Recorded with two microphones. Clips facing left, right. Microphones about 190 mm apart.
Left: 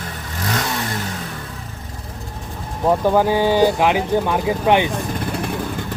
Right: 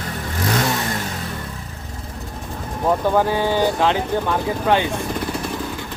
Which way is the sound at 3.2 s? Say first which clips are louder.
Left 3 dB; 15° left (ahead or behind).